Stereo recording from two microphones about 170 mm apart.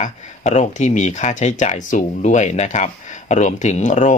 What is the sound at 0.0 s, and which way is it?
Speech, 45° left (ahead or behind).